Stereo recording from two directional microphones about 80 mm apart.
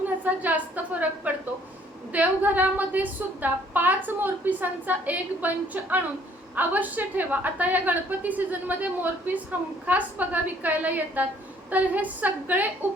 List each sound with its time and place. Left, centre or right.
0.3 s a woman's voice: centre